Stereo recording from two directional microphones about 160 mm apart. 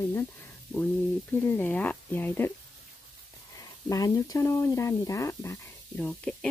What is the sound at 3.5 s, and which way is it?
Speech, 20° left (ahead or behind).